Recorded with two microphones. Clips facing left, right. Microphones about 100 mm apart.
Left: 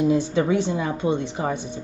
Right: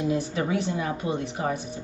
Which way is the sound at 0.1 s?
30° left (ahead or behind).